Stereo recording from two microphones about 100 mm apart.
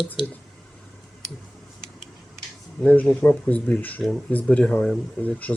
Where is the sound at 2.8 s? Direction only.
15° left (ahead or behind).